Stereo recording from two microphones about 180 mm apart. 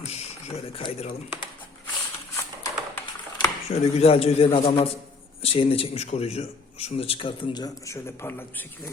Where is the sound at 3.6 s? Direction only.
35° left (ahead or behind).